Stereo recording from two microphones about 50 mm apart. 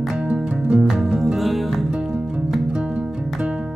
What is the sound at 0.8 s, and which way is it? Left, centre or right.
Music, centre.